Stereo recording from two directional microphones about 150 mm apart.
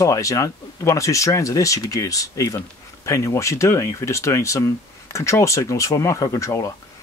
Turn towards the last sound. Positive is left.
turn(degrees=20)  # may be behind; listen again after turning